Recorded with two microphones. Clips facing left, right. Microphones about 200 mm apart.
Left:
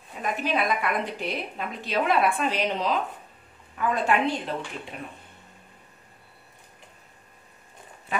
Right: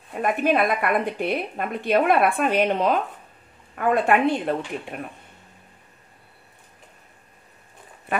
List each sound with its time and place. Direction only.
0.1 s speech: 55° right (ahead or behind)
8.1 s duck: 60° right (ahead or behind)